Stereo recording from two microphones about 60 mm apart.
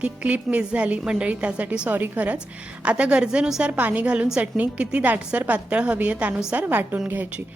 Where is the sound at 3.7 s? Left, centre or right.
Right.